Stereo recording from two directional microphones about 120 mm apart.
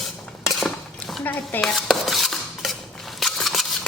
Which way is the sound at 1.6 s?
Centre (ahead or behind).